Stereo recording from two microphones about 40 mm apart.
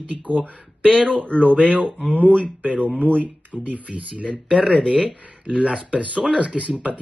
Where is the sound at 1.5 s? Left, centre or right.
Right.